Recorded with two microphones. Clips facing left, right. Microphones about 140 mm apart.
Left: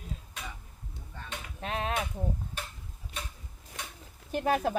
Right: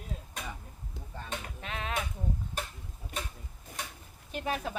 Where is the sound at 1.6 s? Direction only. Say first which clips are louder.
Left 8 dB; 40° left (ahead or behind).